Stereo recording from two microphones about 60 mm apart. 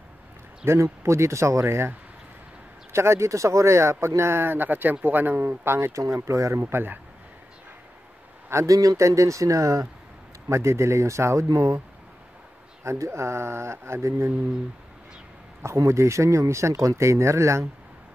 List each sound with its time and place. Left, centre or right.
0.6 s speech: right
2.9 s speech: right
6.1 s speech: right
6.5 s speech: right
8.6 s speech: right
10.5 s speech: right
11.4 s speech: right
12.8 s speech: right
15.6 s speech: right